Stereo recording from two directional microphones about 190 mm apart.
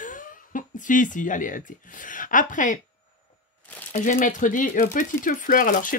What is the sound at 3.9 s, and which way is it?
Speech, 45° left (ahead or behind).